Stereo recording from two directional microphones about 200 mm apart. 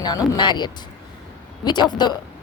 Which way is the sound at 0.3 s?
20° left (ahead or behind).